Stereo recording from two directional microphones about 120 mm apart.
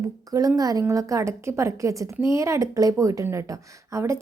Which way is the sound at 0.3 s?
30° right (ahead or behind).